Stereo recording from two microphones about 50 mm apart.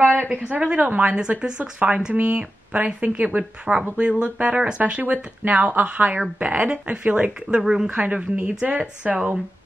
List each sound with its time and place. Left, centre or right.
0.3 s a woman's voice: right
3.7 s a woman's voice: centre; by 6.7 s right
6.7 s a woman's voice: right
7.6 s a woman's voice: centre